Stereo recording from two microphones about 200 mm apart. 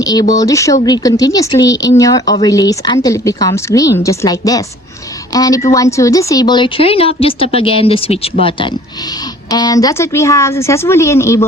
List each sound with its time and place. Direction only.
0.0 s a woman's voice: 20° left (ahead or behind)